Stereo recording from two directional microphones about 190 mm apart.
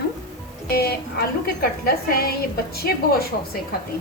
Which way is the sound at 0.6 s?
55° left (ahead or behind).